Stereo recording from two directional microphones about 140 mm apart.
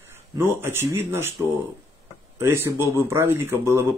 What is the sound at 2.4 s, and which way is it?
Speech, 15° right (ahead or behind).